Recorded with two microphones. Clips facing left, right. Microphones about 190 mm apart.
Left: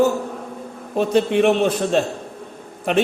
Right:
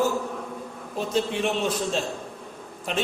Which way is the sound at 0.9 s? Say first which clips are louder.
Left 9 dB; 65° left (ahead or behind).